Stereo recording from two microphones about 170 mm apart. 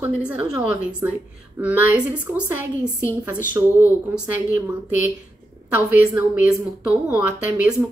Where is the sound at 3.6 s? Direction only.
20° right (ahead or behind).